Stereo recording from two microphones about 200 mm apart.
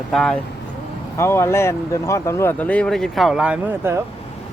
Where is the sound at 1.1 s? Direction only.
15° left (ahead or behind); by 4.0 s 10° right (ahead or behind).